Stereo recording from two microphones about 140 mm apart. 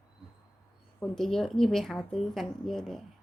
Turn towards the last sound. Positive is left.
turn(degrees=0)  # may be behind; listen again after turning